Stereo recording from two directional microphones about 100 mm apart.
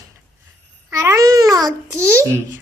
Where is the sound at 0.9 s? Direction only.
30° right (ahead or behind).